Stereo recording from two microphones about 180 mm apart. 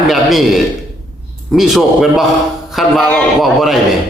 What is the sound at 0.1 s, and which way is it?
A man's voice, centre (ahead or behind).